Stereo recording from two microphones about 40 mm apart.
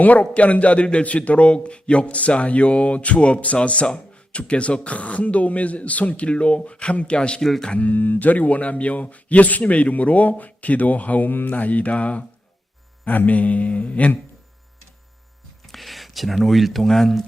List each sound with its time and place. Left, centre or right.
0.0 s speech: left
7.8 s speech: left
15.6 s speech: centre